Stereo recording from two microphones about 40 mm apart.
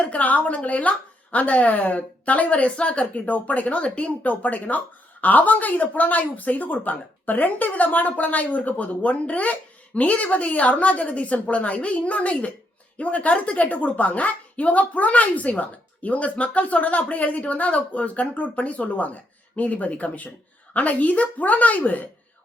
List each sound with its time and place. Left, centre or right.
0.0 s a woman's voice: left
3.1 s a woman's voice: left